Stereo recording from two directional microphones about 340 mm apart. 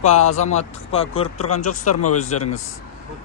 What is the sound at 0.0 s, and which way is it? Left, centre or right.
Speech, centre.